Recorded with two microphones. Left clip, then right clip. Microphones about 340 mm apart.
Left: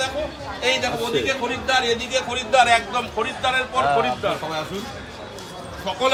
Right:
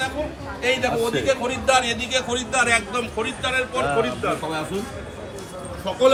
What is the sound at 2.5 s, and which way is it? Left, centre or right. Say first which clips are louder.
Speech: left 4 dB; left.